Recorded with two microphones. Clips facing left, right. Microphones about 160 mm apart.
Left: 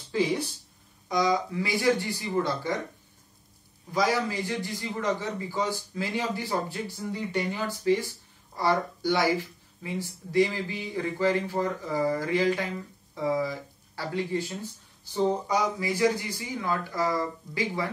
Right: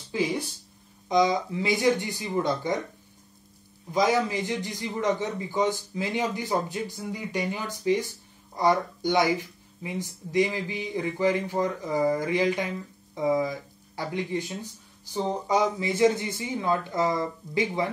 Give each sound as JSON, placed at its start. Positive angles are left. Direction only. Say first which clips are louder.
{"t": 0.1, "sound": "a man's voice", "louder": "left 1 dB", "side_deg": -15}
{"t": 3.9, "sound": "a man's voice", "louder": "right 3 dB", "side_deg": -20}